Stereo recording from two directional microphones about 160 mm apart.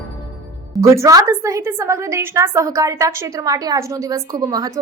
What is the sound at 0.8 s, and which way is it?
A woman's voice, 20° right (ahead or behind).